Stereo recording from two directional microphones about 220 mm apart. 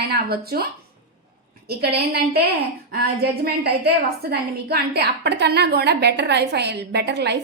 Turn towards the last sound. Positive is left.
turn(degrees=-50)  # may be behind; listen again after turning